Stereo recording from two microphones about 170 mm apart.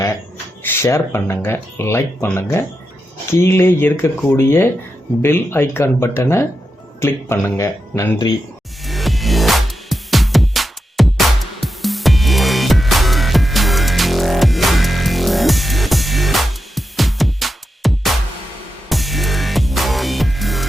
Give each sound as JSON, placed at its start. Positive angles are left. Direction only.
{"t": 0.6, "sound": "speech", "side_deg": 15}
{"t": 8.8, "sound": "music", "side_deg": 0}